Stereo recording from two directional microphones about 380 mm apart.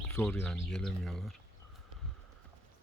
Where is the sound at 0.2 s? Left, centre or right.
Centre.